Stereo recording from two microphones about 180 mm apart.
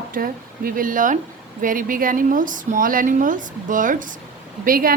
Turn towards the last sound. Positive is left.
turn(degrees=-50)  # may be behind; listen again after turning